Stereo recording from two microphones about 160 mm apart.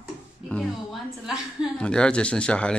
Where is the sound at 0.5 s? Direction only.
Centre (ahead or behind).